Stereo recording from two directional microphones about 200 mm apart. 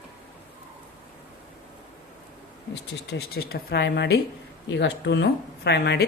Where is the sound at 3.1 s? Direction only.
50° left (ahead or behind).